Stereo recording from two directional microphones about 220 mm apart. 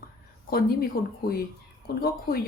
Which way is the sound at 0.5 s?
45° left (ahead or behind).